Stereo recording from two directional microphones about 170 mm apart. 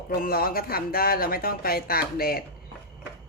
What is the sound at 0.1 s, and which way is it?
Speech, 60° left (ahead or behind).